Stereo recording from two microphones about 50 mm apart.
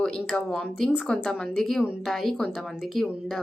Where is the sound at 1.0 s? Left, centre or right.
Centre.